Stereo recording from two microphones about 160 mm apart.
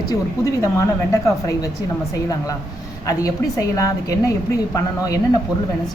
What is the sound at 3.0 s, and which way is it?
A woman's voice, 20° left (ahead or behind).